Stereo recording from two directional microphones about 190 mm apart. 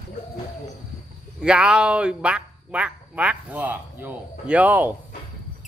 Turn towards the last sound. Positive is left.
turn(degrees=-10)  # may be behind; listen again after turning